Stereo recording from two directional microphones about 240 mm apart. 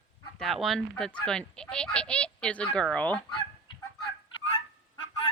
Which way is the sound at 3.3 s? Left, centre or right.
Centre.